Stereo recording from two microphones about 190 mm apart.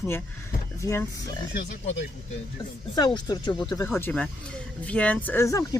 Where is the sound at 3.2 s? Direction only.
20° left (ahead or behind).